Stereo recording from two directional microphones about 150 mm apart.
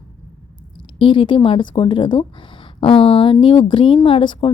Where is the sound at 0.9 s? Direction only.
35° left (ahead or behind).